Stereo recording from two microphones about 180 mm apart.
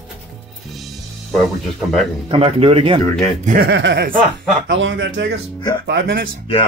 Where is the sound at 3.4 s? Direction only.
50° right (ahead or behind).